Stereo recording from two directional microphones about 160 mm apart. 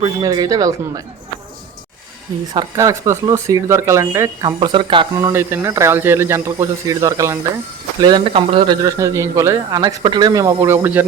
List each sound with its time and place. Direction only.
0.0 s a man's voice: 25° right (ahead or behind)
2.5 s a man's voice: 25° right (ahead or behind)
5.1 s speech: 15° right (ahead or behind)
8.0 s a man's voice: 30° right (ahead or behind); by 11.0 s 15° right (ahead or behind)